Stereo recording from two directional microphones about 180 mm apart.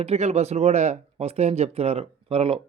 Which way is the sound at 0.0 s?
35° right (ahead or behind).